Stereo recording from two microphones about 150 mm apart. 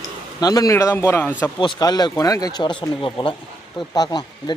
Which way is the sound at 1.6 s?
30° left (ahead or behind).